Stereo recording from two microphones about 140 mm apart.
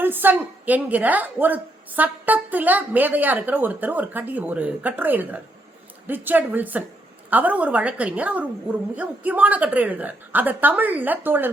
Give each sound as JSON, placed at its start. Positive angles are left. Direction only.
{"t": 0.0, "sound": "a woman's voice", "side_deg": -15}